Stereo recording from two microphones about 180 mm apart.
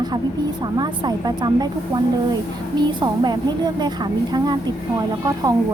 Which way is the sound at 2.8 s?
25° right (ahead or behind).